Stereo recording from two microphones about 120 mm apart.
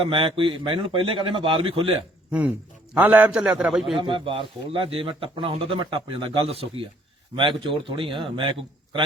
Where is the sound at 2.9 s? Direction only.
15° right (ahead or behind).